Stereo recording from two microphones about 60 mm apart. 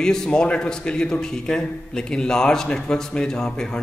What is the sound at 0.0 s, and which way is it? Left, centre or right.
A man's voice, centre.